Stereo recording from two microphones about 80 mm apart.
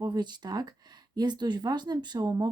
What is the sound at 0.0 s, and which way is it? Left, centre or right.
Speech, right.